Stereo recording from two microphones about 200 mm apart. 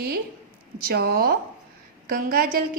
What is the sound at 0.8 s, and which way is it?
A woman's voice, 50° right (ahead or behind).